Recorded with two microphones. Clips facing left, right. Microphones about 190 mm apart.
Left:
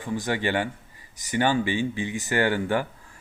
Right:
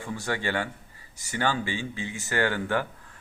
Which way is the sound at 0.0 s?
15° left (ahead or behind).